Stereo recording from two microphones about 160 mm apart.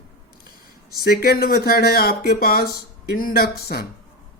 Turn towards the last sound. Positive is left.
turn(degrees=70)  # may be behind; listen again after turning